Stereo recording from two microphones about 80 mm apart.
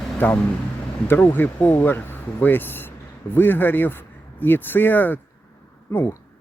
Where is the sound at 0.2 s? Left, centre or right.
Left.